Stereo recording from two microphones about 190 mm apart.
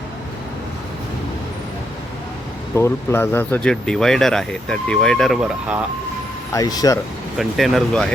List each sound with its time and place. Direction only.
2.7 s speech: 15° left (ahead or behind); by 5.8 s 5° right (ahead or behind)
6.5 s speech: 20° left (ahead or behind)
7.3 s speech: centre (ahead or behind)